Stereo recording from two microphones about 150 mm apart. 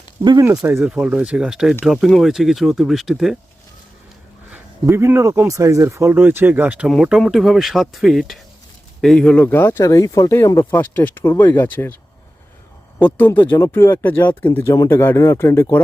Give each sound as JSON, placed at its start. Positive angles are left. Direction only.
{"t": 0.5, "sound": "speech", "side_deg": -20}
{"t": 0.8, "sound": "speech", "side_deg": -5}
{"t": 4.5, "sound": "speech", "side_deg": -15}
{"t": 13.0, "sound": "speech", "side_deg": 10}